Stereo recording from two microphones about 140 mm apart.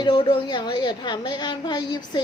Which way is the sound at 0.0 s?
30° left (ahead or behind).